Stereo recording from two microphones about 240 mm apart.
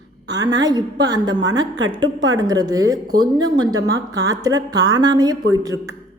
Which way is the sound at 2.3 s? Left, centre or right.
Centre.